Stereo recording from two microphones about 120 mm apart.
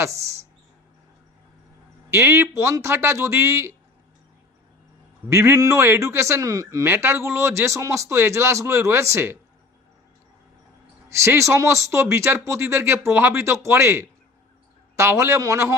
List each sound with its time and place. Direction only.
2.0 s speech: 20° right (ahead or behind)
5.3 s speech: 25° right (ahead or behind)
11.1 s speech: 25° right (ahead or behind)